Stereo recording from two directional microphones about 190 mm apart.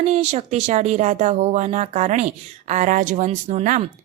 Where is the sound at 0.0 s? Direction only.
35° right (ahead or behind).